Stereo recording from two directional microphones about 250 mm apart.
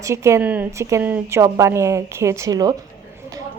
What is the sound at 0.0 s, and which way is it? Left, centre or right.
A woman's voice, centre.